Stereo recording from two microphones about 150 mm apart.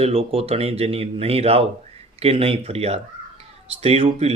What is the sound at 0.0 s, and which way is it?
Speech, 40° right (ahead or behind).